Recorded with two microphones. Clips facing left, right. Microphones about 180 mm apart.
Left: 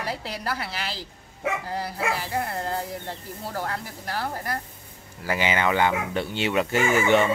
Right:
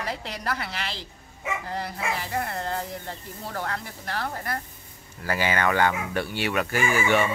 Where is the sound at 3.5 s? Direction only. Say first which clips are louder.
Left 1 dB; 10° left (ahead or behind).